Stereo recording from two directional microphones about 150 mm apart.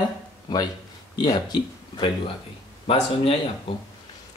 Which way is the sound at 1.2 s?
30° left (ahead or behind).